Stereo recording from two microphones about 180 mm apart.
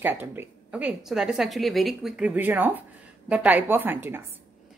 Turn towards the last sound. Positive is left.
turn(degrees=-10)  # may be behind; listen again after turning